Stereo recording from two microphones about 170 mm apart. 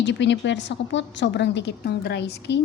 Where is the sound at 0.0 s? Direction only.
90° left.